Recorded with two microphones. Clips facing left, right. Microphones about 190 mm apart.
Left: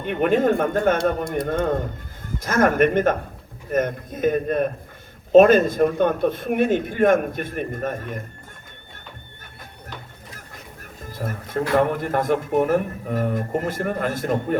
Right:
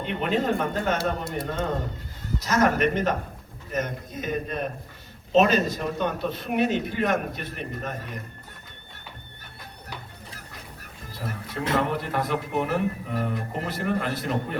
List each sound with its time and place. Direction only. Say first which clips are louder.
0.0 s a man's voice: left 6 dB; 50° left (ahead or behind)
11.0 s a man's voice: left 4 dB; 50° left (ahead or behind)